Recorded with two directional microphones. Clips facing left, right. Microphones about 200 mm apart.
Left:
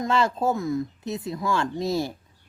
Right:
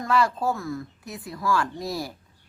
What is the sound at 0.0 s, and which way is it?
Speech, 25° left (ahead or behind).